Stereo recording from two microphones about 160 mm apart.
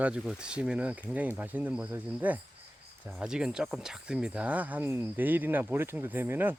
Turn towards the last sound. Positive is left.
turn(degrees=-15)  # may be behind; listen again after turning